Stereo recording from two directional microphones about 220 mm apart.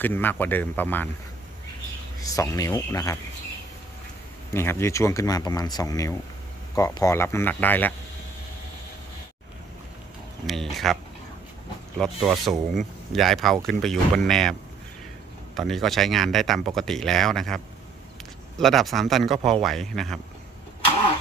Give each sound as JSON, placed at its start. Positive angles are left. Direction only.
{"t": 0.0, "sound": "speech", "side_deg": 10}
{"t": 2.2, "sound": "speech", "side_deg": 15}
{"t": 4.5, "sound": "speech", "side_deg": 10}
{"t": 10.4, "sound": "speech", "side_deg": 0}
{"t": 11.9, "sound": "speech", "side_deg": 0}
{"t": 15.5, "sound": "speech", "side_deg": 0}
{"t": 18.6, "sound": "speech", "side_deg": 0}